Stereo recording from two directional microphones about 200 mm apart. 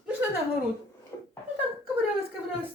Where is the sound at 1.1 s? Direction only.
15° left (ahead or behind).